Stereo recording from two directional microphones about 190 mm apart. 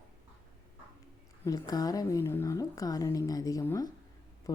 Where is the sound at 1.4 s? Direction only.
20° left (ahead or behind).